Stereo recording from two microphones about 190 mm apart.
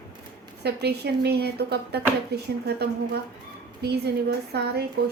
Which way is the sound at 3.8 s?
60° right (ahead or behind).